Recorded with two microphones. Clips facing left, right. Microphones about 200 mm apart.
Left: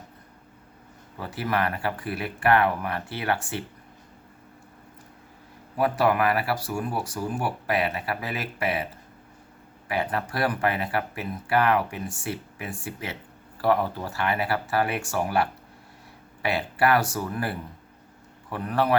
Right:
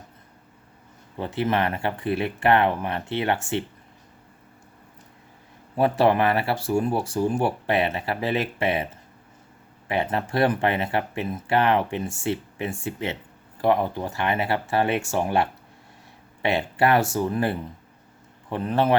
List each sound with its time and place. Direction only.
1.2 s speech: 25° right (ahead or behind)
5.7 s speech: 25° right (ahead or behind)
9.9 s speech: 25° right (ahead or behind)